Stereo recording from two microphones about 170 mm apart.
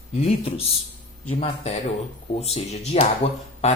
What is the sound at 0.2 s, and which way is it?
Speech, 35° left (ahead or behind).